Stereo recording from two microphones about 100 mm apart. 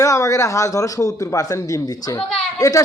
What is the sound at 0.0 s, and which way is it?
Speech, 35° left (ahead or behind).